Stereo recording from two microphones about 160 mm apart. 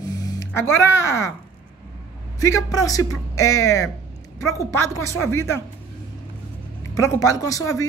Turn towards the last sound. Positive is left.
turn(degrees=20)  # may be behind; listen again after turning